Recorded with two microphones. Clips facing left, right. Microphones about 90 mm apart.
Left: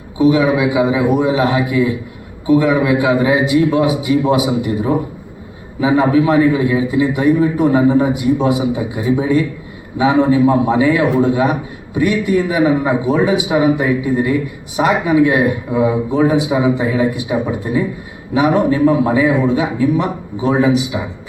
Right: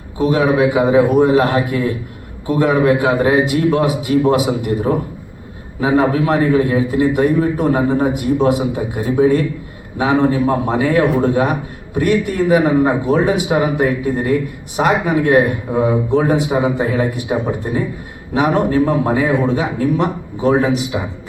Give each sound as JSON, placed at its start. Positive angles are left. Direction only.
{"t": 0.2, "sound": "a man's voice", "side_deg": -45}
{"t": 18.3, "sound": "a man's voice", "side_deg": -50}